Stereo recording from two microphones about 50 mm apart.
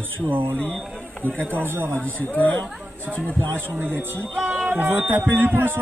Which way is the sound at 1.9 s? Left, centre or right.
Left.